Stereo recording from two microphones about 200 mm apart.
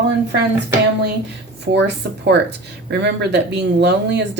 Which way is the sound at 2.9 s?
55° right (ahead or behind).